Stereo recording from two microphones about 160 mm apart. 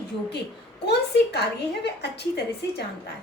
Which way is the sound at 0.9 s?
90° left.